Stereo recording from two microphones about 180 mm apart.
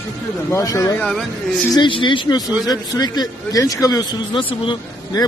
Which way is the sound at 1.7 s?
25° left (ahead or behind).